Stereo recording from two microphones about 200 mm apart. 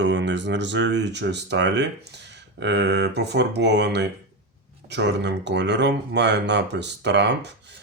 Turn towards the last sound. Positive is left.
turn(degrees=-60)  # may be behind; listen again after turning